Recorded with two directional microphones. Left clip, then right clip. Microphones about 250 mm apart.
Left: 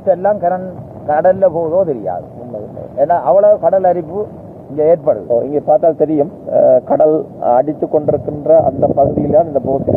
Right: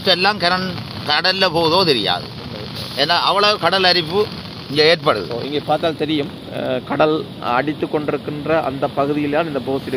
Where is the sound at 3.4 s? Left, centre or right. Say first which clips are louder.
Left 5 dB; right.